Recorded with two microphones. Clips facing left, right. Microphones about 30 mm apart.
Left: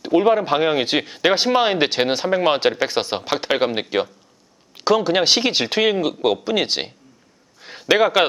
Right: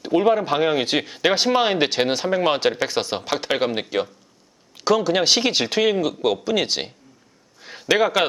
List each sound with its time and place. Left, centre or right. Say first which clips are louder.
0.0 s speech: left 2 dB; centre